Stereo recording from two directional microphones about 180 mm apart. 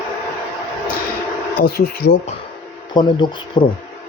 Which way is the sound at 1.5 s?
55° left (ahead or behind).